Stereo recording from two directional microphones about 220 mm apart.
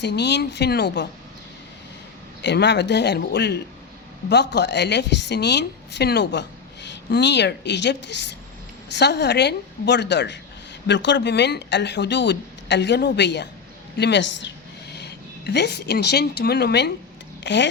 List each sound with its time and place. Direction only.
0.0 s speech: 50° left (ahead or behind)
2.4 s a woman's voice: 50° left (ahead or behind)